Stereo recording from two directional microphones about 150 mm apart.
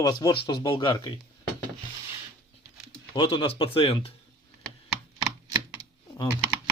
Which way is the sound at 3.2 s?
35° left (ahead or behind).